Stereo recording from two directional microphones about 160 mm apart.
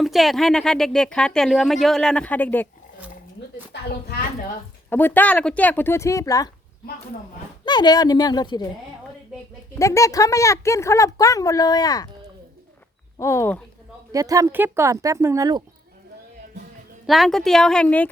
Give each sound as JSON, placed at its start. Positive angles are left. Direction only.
{"t": 0.0, "sound": "speech", "side_deg": 0}
{"t": 4.9, "sound": "speech", "side_deg": 10}
{"t": 7.6, "sound": "speech", "side_deg": 25}
{"t": 9.7, "sound": "speech", "side_deg": 20}
{"t": 13.1, "sound": "speech", "side_deg": 20}
{"t": 14.1, "sound": "speech", "side_deg": -20}
{"t": 17.1, "sound": "speech", "side_deg": 0}